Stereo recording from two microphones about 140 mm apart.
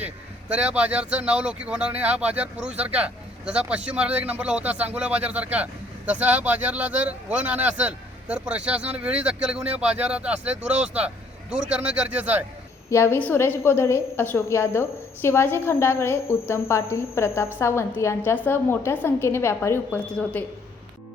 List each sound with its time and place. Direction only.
0.0 s speech: 10° right (ahead or behind)
12.9 s a woman's voice: 20° left (ahead or behind)